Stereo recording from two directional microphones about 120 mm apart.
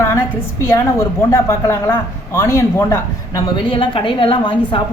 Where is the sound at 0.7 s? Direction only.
25° left (ahead or behind).